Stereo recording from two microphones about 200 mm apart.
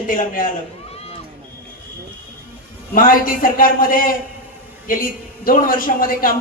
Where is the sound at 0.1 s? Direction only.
45° left (ahead or behind).